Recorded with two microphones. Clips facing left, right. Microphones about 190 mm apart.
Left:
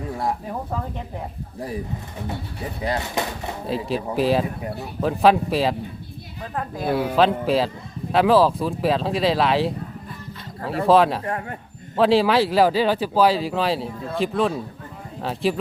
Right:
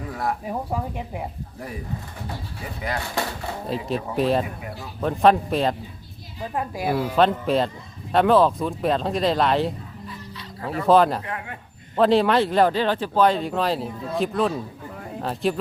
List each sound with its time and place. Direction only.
0.4 s speech: 10° right (ahead or behind)
2.8 s speech: 20° left (ahead or behind)
3.7 s speech: centre (ahead or behind)
6.4 s speech: 15° right (ahead or behind)
7.2 s speech: centre (ahead or behind)
10.8 s speech: centre (ahead or behind)
11.3 s speech: 40° left (ahead or behind)
11.9 s speech: centre (ahead or behind)